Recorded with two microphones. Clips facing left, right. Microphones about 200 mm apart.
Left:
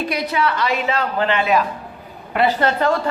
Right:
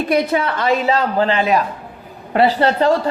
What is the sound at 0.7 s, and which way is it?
A woman's voice, 35° right (ahead or behind).